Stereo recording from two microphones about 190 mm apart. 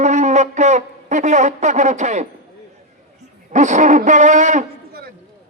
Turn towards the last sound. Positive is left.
turn(degrees=-40)  # may be behind; listen again after turning